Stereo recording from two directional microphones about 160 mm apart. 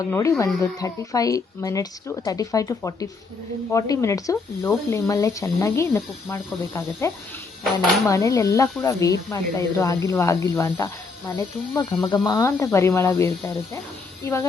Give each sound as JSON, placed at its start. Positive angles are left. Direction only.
{"t": 0.1, "sound": "speech", "side_deg": 20}
{"t": 7.6, "sound": "speech", "side_deg": 0}
{"t": 8.0, "sound": "speech", "side_deg": 20}